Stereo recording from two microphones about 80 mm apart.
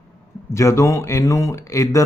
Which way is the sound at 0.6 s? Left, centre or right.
Left.